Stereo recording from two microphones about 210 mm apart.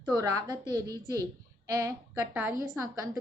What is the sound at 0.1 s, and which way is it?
A woman's voice, 15° right (ahead or behind).